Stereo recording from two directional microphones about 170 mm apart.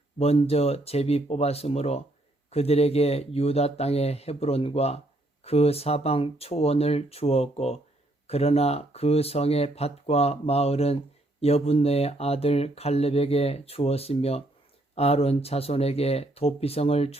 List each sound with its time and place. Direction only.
0.2 s speech: 35° left (ahead or behind)